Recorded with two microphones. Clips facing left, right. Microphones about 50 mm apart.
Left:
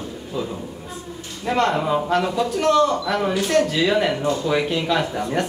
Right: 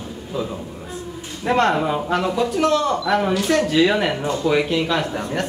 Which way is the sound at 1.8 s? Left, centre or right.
Centre.